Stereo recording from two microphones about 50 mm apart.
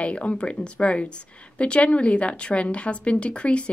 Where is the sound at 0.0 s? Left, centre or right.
Left.